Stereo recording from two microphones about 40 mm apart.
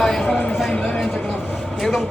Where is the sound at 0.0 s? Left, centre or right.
Centre.